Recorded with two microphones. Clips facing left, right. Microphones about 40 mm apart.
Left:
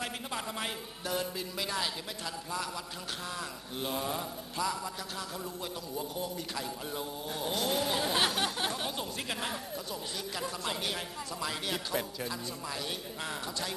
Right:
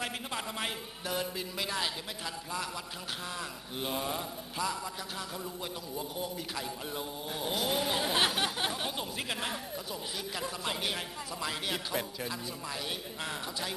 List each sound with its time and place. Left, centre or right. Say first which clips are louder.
0.0 s speech: even; centre
3.3 s speech: even; centre
5.9 s speech: left 1 dB; centre